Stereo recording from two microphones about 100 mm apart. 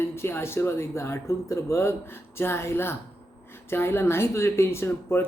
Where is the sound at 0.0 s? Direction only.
25° left (ahead or behind).